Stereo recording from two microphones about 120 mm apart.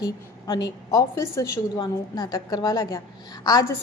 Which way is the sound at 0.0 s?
35° left (ahead or behind).